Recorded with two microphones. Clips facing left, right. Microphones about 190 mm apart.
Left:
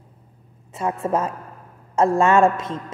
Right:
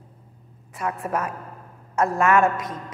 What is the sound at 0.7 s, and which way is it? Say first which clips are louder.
A woman's voice: left 4 dB; 25° left (ahead or behind).